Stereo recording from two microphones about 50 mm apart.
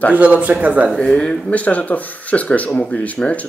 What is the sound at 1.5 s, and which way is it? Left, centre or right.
Speech, left.